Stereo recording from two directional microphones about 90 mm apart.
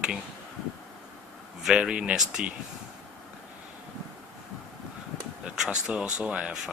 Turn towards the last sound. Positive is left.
turn(degrees=-5)  # may be behind; listen again after turning